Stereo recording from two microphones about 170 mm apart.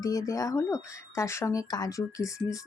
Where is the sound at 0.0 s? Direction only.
20° left (ahead or behind).